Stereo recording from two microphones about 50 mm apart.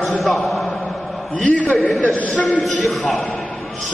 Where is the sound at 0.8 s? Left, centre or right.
Left.